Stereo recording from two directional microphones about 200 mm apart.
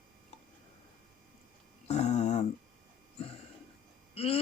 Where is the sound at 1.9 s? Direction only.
35° left (ahead or behind).